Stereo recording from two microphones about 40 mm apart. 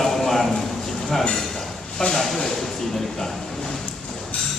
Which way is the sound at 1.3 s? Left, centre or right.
Centre.